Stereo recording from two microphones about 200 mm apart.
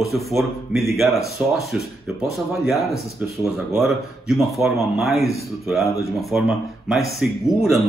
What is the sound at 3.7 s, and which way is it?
Speech, centre (ahead or behind).